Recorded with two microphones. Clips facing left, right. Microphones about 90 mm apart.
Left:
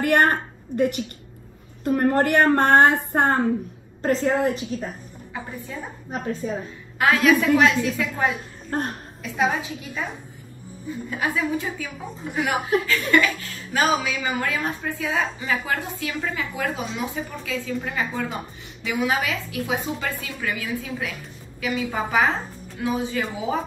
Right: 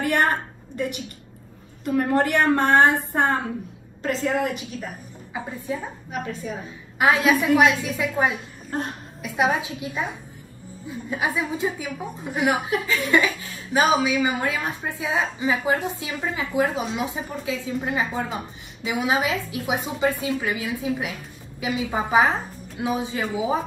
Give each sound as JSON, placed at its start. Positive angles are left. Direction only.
{"t": 0.0, "sound": "a woman's voice", "side_deg": 55}
{"t": 4.0, "sound": "a woman's voice", "side_deg": 35}
{"t": 5.3, "sound": "a woman's voice", "side_deg": -15}
{"t": 6.4, "sound": "a woman's voice", "side_deg": 35}
{"t": 7.0, "sound": "a woman's voice", "side_deg": -20}
{"t": 8.6, "sound": "a sound", "side_deg": 50}
{"t": 9.2, "sound": "a woman's voice", "side_deg": -15}
{"t": 11.1, "sound": "a woman's voice", "side_deg": -15}